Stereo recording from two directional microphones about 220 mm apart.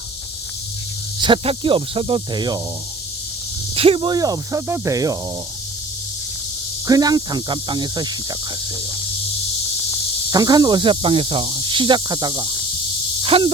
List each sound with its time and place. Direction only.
1.2 s speech: 20° right (ahead or behind)
3.8 s speech: 25° right (ahead or behind)
6.8 s speech: 15° right (ahead or behind)
10.3 s speech: 20° right (ahead or behind)